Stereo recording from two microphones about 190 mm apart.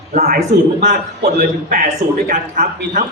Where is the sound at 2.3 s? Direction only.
40° right (ahead or behind).